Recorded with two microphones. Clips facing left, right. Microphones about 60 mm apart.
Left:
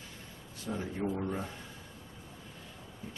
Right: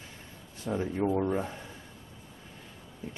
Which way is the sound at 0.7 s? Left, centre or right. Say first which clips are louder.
Right 6 dB; right.